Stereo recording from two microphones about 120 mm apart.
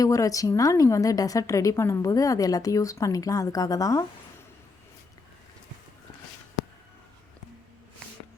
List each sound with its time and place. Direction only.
0.0 s a woman's voice: 25° left (ahead or behind)